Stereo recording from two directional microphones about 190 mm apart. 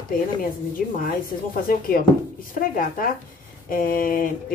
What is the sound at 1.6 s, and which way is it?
Speech, 50° left (ahead or behind).